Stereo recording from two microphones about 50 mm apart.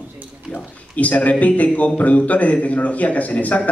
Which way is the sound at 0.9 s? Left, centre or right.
Left.